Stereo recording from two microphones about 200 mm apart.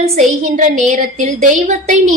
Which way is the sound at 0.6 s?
40° right (ahead or behind).